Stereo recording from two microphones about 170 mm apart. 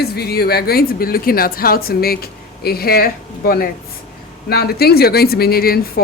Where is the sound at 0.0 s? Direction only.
70° left (ahead or behind).